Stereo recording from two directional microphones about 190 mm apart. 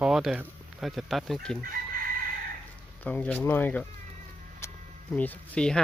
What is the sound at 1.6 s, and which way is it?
Chicken, 45° right (ahead or behind).